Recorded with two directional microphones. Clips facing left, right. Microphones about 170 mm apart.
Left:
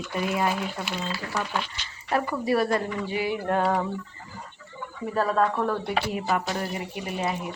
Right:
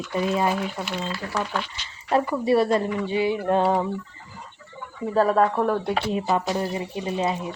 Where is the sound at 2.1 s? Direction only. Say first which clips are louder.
Right 4 dB; 25° right (ahead or behind).